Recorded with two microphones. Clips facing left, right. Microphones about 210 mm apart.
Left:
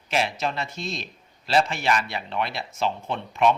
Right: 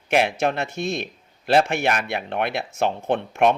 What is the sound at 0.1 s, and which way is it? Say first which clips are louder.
A man's voice: right 6 dB; 55° right (ahead or behind).